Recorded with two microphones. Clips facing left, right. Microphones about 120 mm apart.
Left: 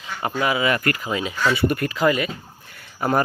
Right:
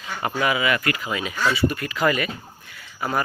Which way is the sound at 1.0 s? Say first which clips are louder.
Left 2 dB; 30° left (ahead or behind).